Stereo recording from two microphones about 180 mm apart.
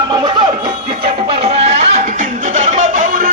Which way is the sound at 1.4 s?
35° right (ahead or behind).